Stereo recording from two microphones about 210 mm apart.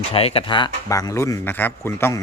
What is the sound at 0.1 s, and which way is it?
A man's voice, 25° left (ahead or behind).